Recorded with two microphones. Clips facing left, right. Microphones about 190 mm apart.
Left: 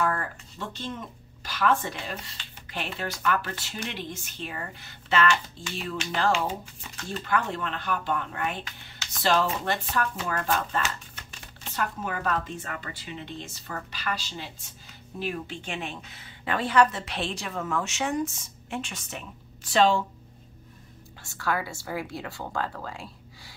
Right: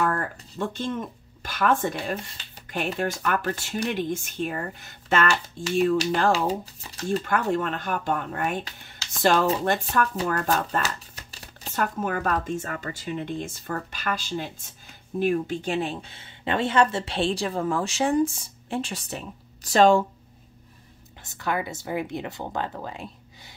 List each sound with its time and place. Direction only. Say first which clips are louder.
0.0 s speech: right 2 dB; 45° right (ahead or behind)
7.1 s speech: right 5 dB; 45° right (ahead or behind)
21.2 s speech: right 2 dB; 20° right (ahead or behind)